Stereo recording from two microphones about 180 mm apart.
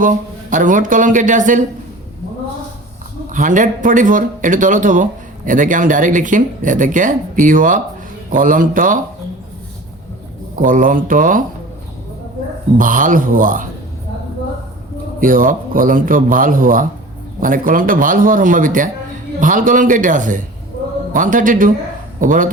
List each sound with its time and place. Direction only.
0.0 s speech: 45° right (ahead or behind)
3.3 s speech: 45° right (ahead or behind)
10.5 s speech: 50° right (ahead or behind)
12.7 s speech: 50° right (ahead or behind)
15.2 s speech: 50° right (ahead or behind)